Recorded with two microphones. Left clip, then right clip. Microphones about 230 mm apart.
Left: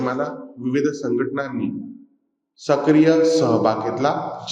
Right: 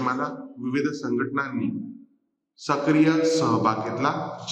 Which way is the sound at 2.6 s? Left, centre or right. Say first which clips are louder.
Left 5 dB; centre.